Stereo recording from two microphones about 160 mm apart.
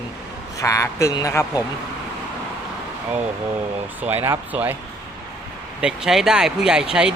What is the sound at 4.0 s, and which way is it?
Speech, 15° right (ahead or behind).